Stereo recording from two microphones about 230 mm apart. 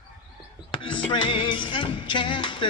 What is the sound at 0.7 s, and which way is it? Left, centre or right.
Music, left.